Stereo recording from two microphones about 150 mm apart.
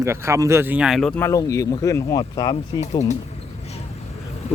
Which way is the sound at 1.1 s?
20° left (ahead or behind).